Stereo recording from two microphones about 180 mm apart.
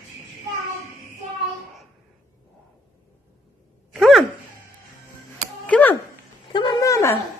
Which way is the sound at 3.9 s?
Centre (ahead or behind).